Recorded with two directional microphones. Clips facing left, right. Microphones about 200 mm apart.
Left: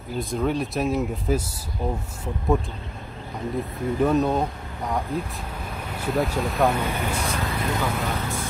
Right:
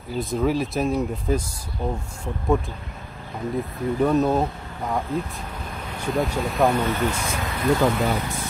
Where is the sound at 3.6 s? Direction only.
Centre (ahead or behind).